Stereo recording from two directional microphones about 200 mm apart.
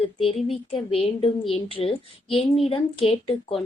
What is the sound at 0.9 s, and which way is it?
A woman's voice, 30° left (ahead or behind).